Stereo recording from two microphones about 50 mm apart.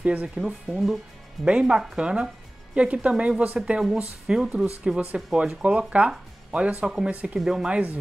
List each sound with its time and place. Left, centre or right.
0.0 s speech: right
0.4 s speech: centre
1.4 s speech: centre
4.3 s speech: centre
7.3 s speech: centre
7.7 s speech: right